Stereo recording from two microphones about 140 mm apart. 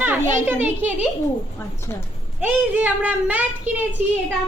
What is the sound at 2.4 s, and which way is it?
Speech, 10° right (ahead or behind).